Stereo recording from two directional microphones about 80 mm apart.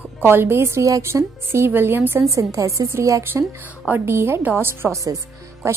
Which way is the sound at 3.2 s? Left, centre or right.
Right.